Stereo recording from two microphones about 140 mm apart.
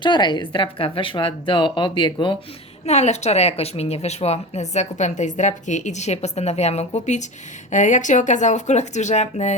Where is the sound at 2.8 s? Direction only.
50° left (ahead or behind).